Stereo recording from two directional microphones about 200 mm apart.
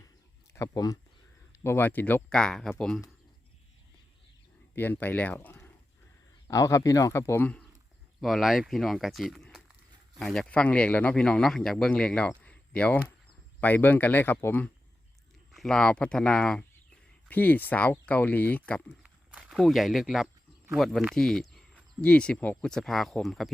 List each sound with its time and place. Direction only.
0.5 s speech: 15° left (ahead or behind)
4.7 s speech: 10° left (ahead or behind)
19.0 s walk: 5° right (ahead or behind)
20.7 s speech: centre (ahead or behind)